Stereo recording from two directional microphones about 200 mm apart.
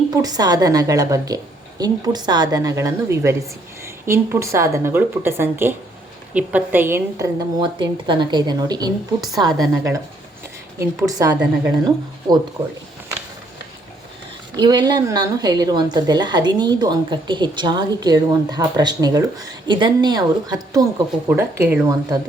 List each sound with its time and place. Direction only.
0.1 s a woman's voice: 20° right (ahead or behind)
14.5 s a woman's voice: 20° right (ahead or behind)